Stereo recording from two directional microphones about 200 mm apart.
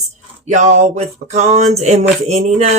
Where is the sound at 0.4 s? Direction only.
35° right (ahead or behind).